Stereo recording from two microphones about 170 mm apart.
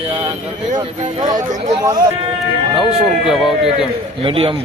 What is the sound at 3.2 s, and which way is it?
Speech, centre (ahead or behind).